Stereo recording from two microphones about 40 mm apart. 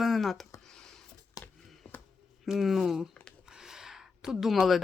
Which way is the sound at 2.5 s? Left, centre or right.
Centre.